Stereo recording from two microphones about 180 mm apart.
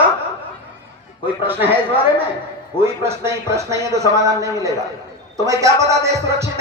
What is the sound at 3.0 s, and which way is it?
A man's voice, 15° right (ahead or behind).